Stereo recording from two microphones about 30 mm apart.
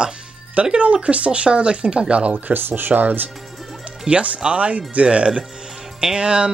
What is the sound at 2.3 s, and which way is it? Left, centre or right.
Speech, right.